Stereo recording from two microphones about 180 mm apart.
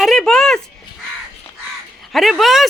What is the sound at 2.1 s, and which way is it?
Speech, centre (ahead or behind).